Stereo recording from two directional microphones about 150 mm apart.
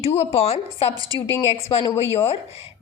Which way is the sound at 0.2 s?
45° left (ahead or behind).